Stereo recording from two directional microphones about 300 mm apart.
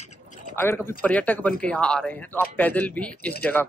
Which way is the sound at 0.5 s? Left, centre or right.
Centre.